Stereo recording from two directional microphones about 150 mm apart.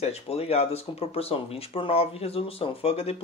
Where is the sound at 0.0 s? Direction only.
45° left (ahead or behind).